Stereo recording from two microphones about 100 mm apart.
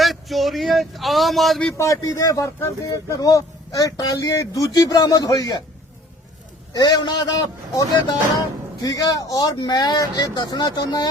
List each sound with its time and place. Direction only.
0.0 s a man's voice: centre (ahead or behind)
1.8 s speech: 35° left (ahead or behind)
6.7 s speech: 40° left (ahead or behind)